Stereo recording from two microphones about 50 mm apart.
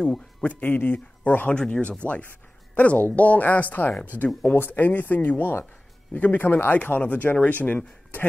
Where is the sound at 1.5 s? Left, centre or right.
Left.